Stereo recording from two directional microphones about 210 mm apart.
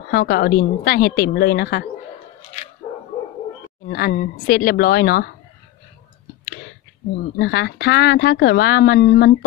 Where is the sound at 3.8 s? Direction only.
45° left (ahead or behind).